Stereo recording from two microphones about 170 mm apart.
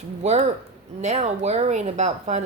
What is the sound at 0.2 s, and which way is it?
A woman's voice, 40° right (ahead or behind).